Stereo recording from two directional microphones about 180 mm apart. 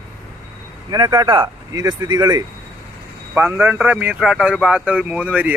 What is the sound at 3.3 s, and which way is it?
Speech, 10° right (ahead or behind).